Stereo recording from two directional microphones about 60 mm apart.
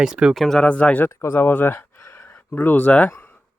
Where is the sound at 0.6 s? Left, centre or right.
Left.